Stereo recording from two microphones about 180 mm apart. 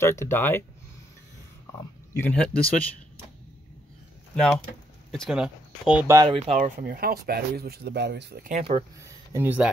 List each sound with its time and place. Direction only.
0.0 s speech: 15° left (ahead or behind)
2.1 s speech: 10° left (ahead or behind)
5.1 s speech: centre (ahead or behind)
6.1 s speech: 30° right (ahead or behind)
6.8 s speech: 55° right (ahead or behind)
8.5 s speech: 35° right (ahead or behind)
9.0 s a sound: 15° right (ahead or behind)